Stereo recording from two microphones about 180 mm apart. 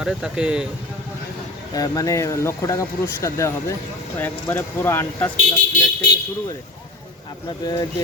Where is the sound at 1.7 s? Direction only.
20° left (ahead or behind).